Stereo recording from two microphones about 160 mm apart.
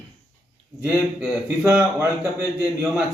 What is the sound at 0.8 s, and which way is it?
A man's voice, 15° right (ahead or behind).